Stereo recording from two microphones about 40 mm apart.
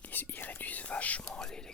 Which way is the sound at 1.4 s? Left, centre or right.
Centre.